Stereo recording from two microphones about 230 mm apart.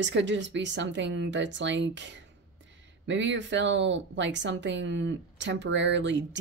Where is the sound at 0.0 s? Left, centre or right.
Right.